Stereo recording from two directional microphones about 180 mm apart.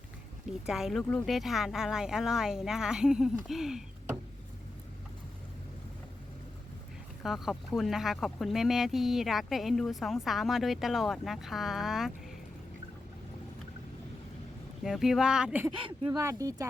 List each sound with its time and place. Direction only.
0.6 s speech: centre (ahead or behind)
7.2 s speech: centre (ahead or behind)
14.8 s speech: centre (ahead or behind)
15.7 s speech: 30° right (ahead or behind)
16.1 s speech: 15° right (ahead or behind)